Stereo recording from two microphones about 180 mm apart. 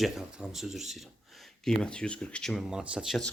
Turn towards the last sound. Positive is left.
turn(degrees=0)  # may be behind; listen again after turning